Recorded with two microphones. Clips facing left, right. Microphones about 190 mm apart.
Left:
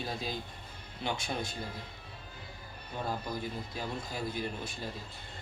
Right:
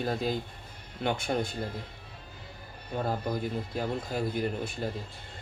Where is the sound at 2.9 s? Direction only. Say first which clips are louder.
Right 5 dB; 55° right (ahead or behind).